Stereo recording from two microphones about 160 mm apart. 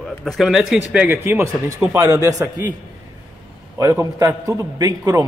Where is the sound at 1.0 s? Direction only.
15° right (ahead or behind).